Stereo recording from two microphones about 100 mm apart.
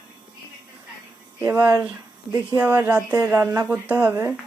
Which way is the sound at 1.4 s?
35° right (ahead or behind).